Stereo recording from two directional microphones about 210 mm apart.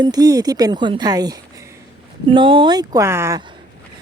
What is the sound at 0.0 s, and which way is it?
Speech, 20° right (ahead or behind).